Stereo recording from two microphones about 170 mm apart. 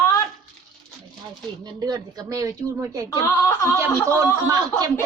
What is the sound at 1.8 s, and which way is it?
Speech, 20° right (ahead or behind).